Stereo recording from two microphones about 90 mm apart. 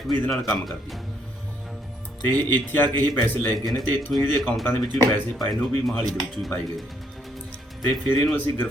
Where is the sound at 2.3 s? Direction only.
20° left (ahead or behind).